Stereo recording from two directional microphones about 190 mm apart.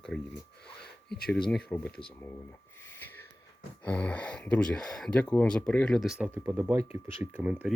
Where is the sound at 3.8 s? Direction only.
5° left (ahead or behind).